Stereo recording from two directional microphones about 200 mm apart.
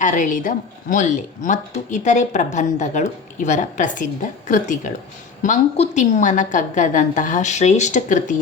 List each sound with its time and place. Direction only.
0.0 s speech: 40° left (ahead or behind)